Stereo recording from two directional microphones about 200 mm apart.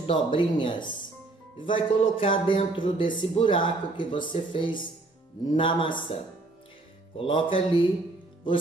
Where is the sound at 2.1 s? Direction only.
25° left (ahead or behind).